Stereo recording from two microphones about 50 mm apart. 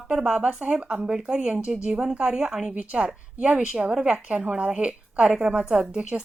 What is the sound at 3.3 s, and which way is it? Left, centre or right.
Speech, right.